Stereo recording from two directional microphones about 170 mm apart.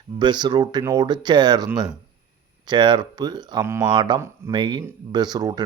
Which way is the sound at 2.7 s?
25° right (ahead or behind).